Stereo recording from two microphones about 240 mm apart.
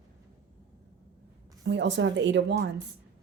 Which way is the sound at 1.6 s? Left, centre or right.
Right.